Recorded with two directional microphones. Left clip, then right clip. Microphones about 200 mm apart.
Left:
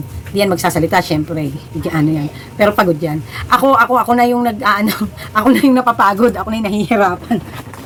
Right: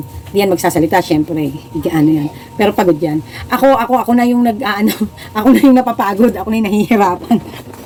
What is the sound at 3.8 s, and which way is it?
A woman's voice, 5° left (ahead or behind).